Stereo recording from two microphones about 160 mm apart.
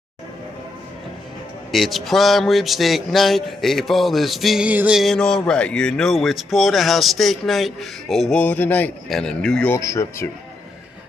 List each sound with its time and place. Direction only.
1.7 s speech: centre (ahead or behind)
9.8 s speech: 20° left (ahead or behind)